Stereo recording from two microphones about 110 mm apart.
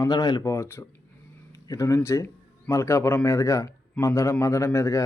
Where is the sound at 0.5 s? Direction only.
25° left (ahead or behind).